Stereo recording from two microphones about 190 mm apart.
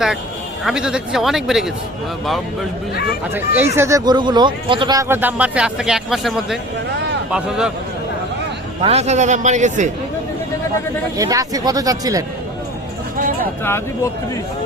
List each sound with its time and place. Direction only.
0.6 s speech: 5° right (ahead or behind)
2.9 s speech: 60° left (ahead or behind)
3.8 s a man's voice: 15° right (ahead or behind)
8.8 s a man's voice: 35° right (ahead or behind)
11.2 s speech: 20° right (ahead or behind)
13.1 s a sound: 50° right (ahead or behind)
13.7 s speech: 15° left (ahead or behind)